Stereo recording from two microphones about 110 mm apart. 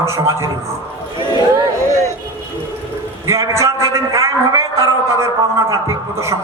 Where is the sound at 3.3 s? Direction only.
25° right (ahead or behind).